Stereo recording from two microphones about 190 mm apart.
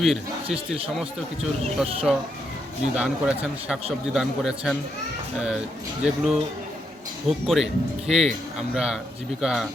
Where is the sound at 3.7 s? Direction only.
5° right (ahead or behind).